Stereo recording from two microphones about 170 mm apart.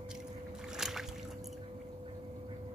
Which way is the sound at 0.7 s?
Centre (ahead or behind).